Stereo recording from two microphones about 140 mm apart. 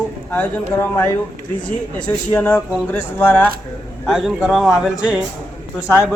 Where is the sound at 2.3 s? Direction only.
15° left (ahead or behind).